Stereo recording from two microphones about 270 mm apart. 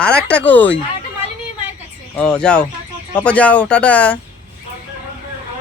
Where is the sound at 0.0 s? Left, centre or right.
Centre.